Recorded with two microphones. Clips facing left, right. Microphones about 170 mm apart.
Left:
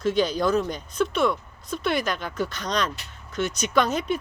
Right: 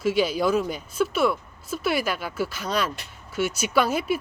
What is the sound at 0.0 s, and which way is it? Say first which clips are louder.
Speech: even; 5° right (ahead or behind).